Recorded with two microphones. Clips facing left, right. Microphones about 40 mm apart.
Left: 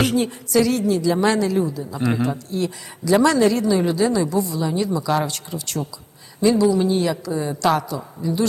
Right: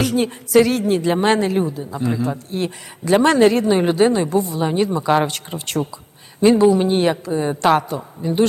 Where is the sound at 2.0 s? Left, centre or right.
Left.